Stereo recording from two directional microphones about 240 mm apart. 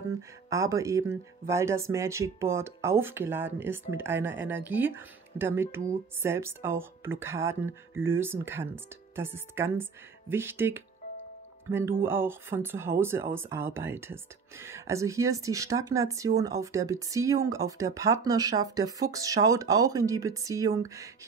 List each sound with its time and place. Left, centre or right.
0.5 s speech: centre